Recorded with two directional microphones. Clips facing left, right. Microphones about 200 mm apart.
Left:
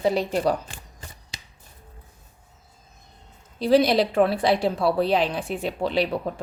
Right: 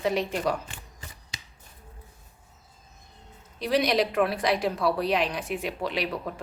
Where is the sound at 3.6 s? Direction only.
30° left (ahead or behind).